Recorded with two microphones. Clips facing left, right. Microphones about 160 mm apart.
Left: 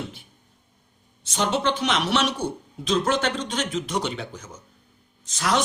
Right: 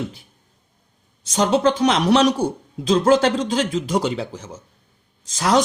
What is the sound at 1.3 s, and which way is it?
A man's voice, 40° right (ahead or behind).